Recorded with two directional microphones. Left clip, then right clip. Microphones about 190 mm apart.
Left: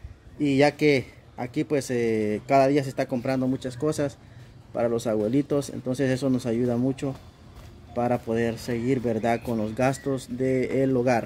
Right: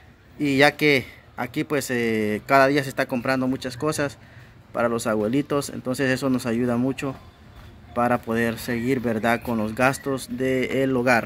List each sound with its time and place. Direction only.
0.4 s speech: 20° left (ahead or behind)